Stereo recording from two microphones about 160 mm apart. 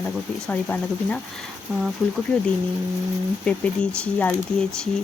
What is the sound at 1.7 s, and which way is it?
Speech, 5° right (ahead or behind).